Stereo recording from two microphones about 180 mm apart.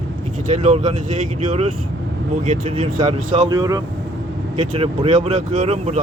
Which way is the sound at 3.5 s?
20° right (ahead or behind).